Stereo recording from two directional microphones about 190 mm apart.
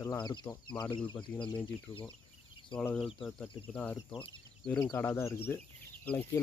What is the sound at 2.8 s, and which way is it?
Speech, 5° left (ahead or behind).